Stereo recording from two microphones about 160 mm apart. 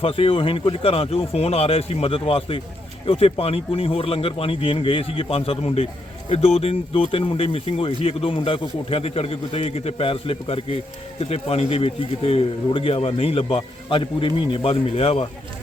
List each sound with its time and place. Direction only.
0.0 s speech: 35° left (ahead or behind)